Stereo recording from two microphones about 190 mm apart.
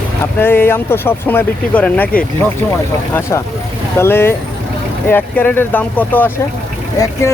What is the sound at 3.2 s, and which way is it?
Speech, 15° left (ahead or behind).